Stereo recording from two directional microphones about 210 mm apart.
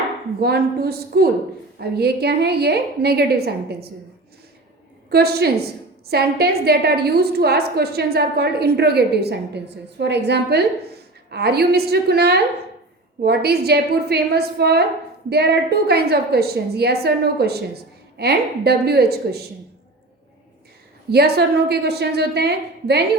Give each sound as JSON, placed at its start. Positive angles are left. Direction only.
{"t": 0.3, "sound": "a woman's voice", "side_deg": -50}
{"t": 5.0, "sound": "a woman's voice", "side_deg": -50}
{"t": 21.1, "sound": "a woman's voice", "side_deg": -50}